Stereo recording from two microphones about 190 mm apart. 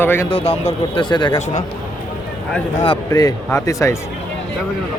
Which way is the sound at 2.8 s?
20° left (ahead or behind).